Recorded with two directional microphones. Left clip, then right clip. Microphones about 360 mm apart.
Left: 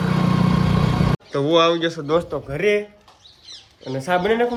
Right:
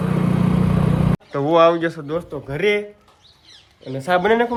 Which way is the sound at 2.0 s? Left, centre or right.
Centre.